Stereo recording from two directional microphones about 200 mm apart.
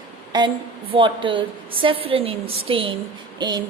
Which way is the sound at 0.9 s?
25° right (ahead or behind).